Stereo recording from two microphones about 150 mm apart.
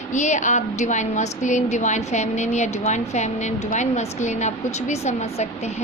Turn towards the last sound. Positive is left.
turn(degrees=50)  # may be behind; listen again after turning